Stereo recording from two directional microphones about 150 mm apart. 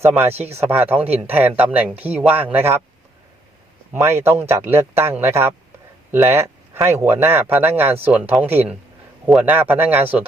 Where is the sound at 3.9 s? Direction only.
15° right (ahead or behind).